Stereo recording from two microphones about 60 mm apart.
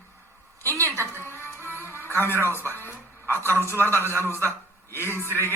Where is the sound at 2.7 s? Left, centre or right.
Left.